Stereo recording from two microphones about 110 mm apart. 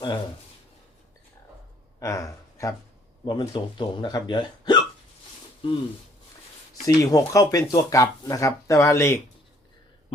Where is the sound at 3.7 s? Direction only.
40° left (ahead or behind).